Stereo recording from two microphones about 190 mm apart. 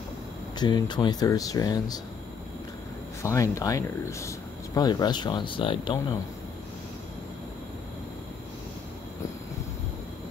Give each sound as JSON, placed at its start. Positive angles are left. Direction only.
{"t": 0.6, "sound": "speech", "side_deg": 20}
{"t": 3.2, "sound": "speech", "side_deg": 15}